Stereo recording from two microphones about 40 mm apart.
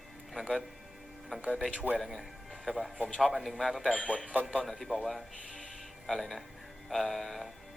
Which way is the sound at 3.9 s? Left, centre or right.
Left.